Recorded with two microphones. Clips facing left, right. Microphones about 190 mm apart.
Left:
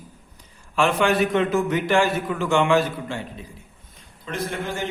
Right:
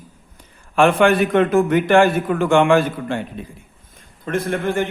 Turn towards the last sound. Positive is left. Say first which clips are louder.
# right 7 dB
turn(degrees=-55)  # may be behind; listen again after turning